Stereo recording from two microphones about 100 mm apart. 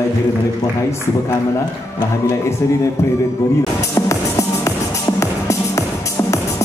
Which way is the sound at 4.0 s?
30° left (ahead or behind).